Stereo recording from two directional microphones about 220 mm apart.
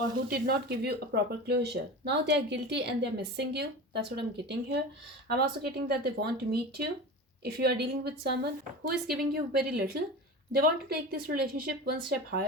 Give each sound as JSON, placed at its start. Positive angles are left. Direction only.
{"t": 0.3, "sound": "speech", "side_deg": -45}